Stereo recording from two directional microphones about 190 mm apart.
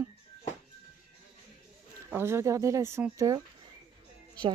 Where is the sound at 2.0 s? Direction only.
10° right (ahead or behind).